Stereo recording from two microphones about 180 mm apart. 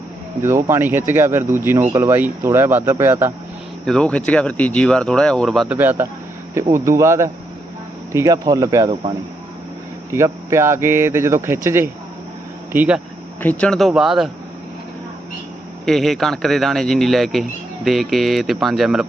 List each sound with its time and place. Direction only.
0.4 s speech: 15° right (ahead or behind)
3.8 s speech: 5° left (ahead or behind)
5.7 s speech: 10° right (ahead or behind)
10.1 s speech: 15° right (ahead or behind)
13.4 s speech: 5° left (ahead or behind)
15.9 s speech: centre (ahead or behind)